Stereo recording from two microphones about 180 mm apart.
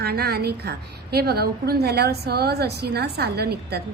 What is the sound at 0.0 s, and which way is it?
A woman's voice, 60° right (ahead or behind).